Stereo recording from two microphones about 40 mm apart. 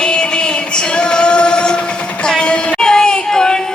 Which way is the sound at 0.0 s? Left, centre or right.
Left.